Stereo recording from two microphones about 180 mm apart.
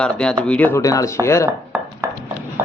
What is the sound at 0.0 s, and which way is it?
Speech, 5° left (ahead or behind).